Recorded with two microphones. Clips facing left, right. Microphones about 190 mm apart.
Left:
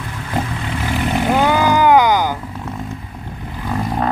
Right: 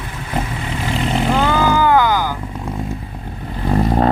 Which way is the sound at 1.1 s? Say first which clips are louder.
Left 2 dB; 15° left (ahead or behind).